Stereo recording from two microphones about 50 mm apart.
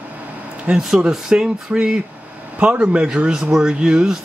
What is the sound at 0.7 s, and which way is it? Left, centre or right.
Speech, centre.